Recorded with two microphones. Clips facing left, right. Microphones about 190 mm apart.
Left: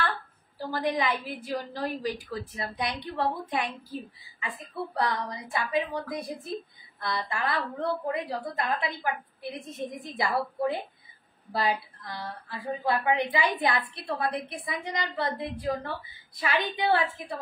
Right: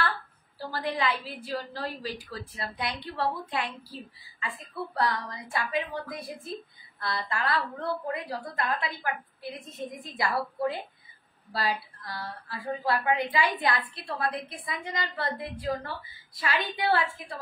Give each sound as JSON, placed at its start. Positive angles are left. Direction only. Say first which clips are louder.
{"t": 0.6, "sound": "a woman's voice", "louder": "left 3 dB", "side_deg": 15}
{"t": 11.5, "sound": "a woman's voice", "louder": "left 3 dB", "side_deg": 20}